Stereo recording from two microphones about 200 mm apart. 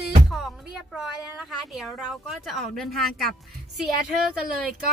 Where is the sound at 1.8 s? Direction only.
5° right (ahead or behind).